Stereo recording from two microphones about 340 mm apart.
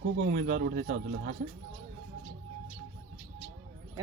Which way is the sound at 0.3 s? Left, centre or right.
Right.